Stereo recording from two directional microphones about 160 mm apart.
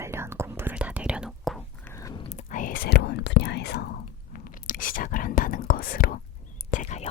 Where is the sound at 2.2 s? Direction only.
50° left (ahead or behind).